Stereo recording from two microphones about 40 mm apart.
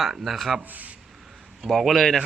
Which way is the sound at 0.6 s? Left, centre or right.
Right.